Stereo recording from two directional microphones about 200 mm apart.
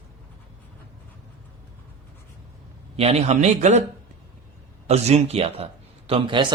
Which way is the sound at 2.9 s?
30° right (ahead or behind).